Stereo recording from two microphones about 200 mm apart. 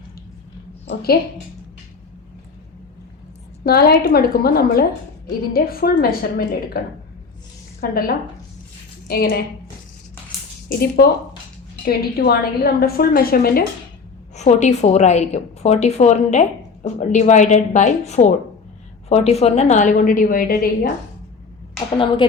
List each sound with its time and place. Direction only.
0.9 s a woman's voice: 50° left (ahead or behind)
3.6 s a woman's voice: 50° left (ahead or behind)
7.8 s a woman's voice: 50° left (ahead or behind)
10.7 s a woman's voice: 50° left (ahead or behind)
14.3 s a woman's voice: 35° left (ahead or behind)
21.9 s speech: 25° left (ahead or behind)